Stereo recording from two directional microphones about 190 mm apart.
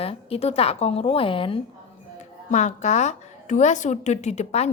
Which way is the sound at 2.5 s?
40° left (ahead or behind).